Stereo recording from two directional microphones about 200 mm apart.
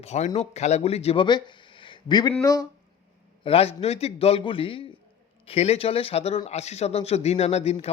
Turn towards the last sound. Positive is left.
turn(degrees=30)  # may be behind; listen again after turning